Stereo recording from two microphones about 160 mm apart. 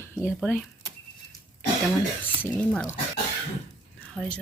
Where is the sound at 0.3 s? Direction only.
5° left (ahead or behind).